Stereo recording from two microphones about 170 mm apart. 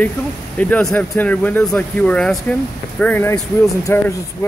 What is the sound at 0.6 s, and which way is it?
Speech, 5° left (ahead or behind).